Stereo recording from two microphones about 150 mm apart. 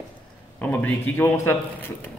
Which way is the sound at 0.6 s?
10° left (ahead or behind).